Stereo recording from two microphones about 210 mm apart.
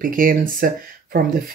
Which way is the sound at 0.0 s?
40° right (ahead or behind).